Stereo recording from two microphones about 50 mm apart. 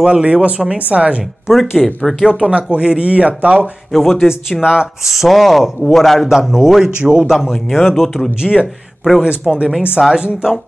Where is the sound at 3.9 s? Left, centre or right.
Centre.